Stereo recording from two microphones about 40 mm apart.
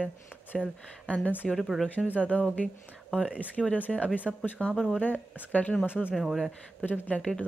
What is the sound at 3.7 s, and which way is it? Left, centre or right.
Speech, left.